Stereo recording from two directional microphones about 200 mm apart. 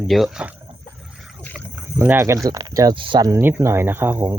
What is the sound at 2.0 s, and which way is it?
Speech, 10° right (ahead or behind).